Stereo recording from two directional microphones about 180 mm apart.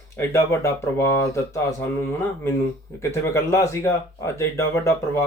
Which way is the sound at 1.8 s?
15° left (ahead or behind).